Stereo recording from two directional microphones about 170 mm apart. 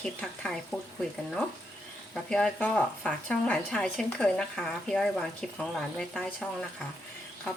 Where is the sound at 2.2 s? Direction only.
5° left (ahead or behind).